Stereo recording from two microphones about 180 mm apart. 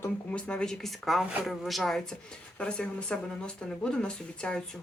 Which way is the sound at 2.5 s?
5° left (ahead or behind).